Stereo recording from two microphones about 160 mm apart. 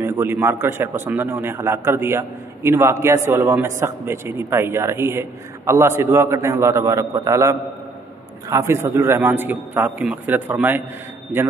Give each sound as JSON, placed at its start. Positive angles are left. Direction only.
{"t": 0.0, "sound": "a man's voice", "side_deg": -15}